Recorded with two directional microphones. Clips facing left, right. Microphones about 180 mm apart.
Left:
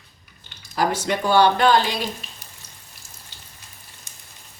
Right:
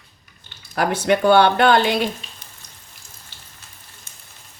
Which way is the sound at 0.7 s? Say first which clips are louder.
Right 4 dB; 60° right (ahead or behind).